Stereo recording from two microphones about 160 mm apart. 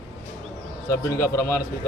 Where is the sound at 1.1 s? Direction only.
20° left (ahead or behind).